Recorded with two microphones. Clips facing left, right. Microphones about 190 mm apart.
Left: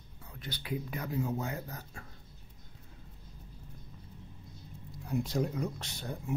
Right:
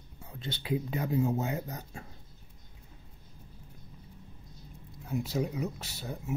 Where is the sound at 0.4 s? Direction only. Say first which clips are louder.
Right 5 dB; 25° right (ahead or behind).